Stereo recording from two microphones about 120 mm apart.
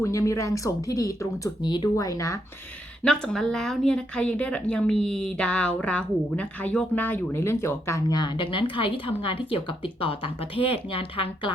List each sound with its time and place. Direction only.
0.0 s speech: 25° left (ahead or behind)
3.0 s speech: 5° left (ahead or behind); by 8.0 s 20° left (ahead or behind)
8.1 s speech: 40° left (ahead or behind)